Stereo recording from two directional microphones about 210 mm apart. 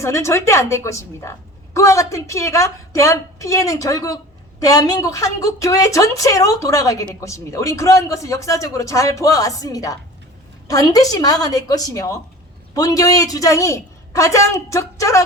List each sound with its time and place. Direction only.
0.0 s a woman's voice: 15° left (ahead or behind)